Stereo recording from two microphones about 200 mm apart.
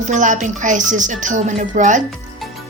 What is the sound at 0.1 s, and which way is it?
A woman's voice, 40° right (ahead or behind).